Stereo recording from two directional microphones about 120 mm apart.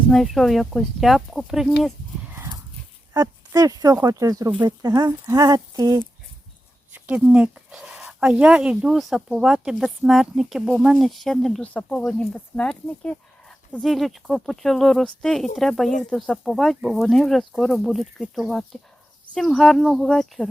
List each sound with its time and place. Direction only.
0.1 s speech: centre (ahead or behind)
3.2 s speech: 30° right (ahead or behind)
6.9 s speech: 10° right (ahead or behind)